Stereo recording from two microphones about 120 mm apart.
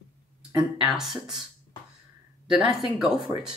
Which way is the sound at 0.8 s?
5° right (ahead or behind).